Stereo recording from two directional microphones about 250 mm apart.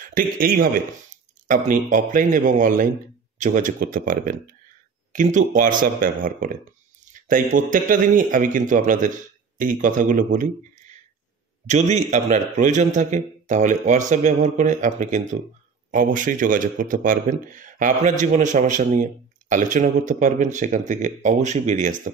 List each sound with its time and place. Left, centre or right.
0.0 s a man's voice: right